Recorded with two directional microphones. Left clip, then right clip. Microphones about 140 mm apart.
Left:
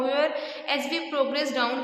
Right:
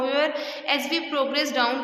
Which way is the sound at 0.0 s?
20° right (ahead or behind).